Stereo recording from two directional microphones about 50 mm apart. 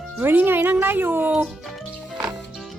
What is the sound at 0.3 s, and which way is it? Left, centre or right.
Speech, right.